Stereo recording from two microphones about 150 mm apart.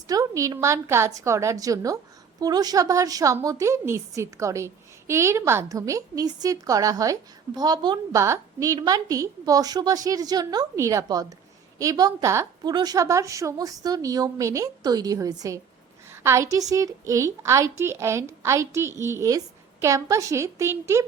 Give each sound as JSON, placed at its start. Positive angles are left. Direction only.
{"t": 0.1, "sound": "a woman's voice", "side_deg": -20}